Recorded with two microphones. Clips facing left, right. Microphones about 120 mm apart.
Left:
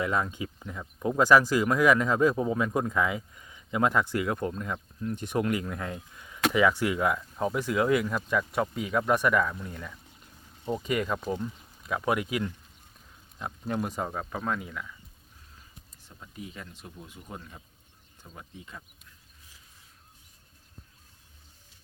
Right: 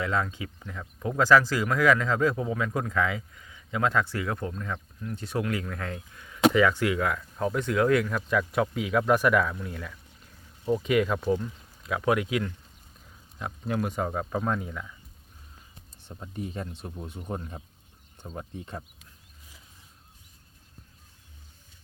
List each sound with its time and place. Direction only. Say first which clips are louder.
0.0 s speech: even; 15° left (ahead or behind); by 14.8 s 5° right (ahead or behind)
16.0 s speech: right 7 dB; 35° right (ahead or behind)
18.5 s speech: right 7 dB; 40° right (ahead or behind)